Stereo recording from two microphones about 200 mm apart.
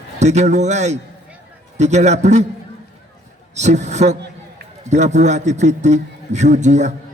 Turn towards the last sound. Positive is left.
turn(degrees=-35)  # may be behind; listen again after turning